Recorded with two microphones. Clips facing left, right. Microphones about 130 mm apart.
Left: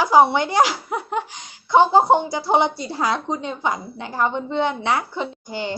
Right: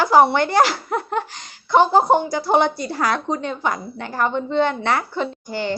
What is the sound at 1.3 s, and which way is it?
A woman's voice, 15° left (ahead or behind).